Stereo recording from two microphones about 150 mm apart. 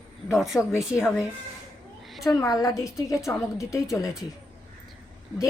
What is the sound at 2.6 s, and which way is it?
A woman's voice, 20° left (ahead or behind).